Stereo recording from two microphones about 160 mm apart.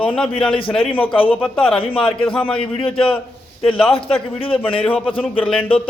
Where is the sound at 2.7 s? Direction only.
35° left (ahead or behind).